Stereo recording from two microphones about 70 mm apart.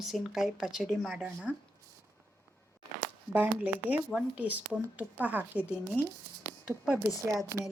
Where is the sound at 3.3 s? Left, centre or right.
Right.